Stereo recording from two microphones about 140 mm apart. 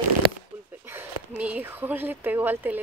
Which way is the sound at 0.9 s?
10° right (ahead or behind).